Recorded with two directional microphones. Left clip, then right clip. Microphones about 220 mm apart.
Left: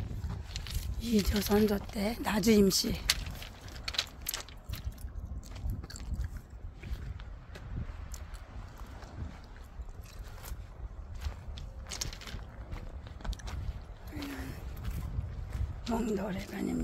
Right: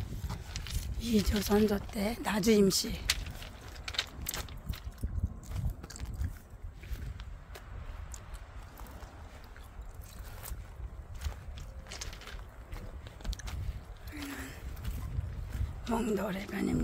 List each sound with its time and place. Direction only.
0.5 s a sound: 5° right (ahead or behind)
1.4 s speech: 5° left (ahead or behind)
3.8 s mechanisms: 15° left (ahead or behind)
11.5 s mechanisms: 45° left (ahead or behind)
13.2 s a sound: 5° right (ahead or behind)
15.9 s speech: 15° right (ahead or behind)